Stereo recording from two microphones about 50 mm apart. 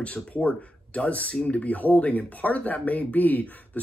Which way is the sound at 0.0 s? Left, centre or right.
Left.